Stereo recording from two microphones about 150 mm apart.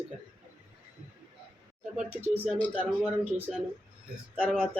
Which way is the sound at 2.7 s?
10° right (ahead or behind).